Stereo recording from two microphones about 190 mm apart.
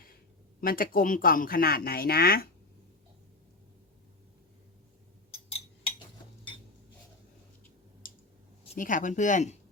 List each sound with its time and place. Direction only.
0.6 s speech: 50° left (ahead or behind)
8.0 s clicking: 50° left (ahead or behind)
8.7 s speech: 45° left (ahead or behind)